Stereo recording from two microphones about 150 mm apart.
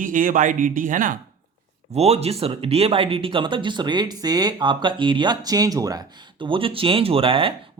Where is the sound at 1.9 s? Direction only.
45° right (ahead or behind).